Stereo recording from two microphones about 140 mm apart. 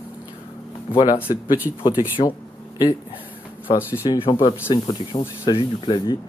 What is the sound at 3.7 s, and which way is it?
Speech, 40° left (ahead or behind).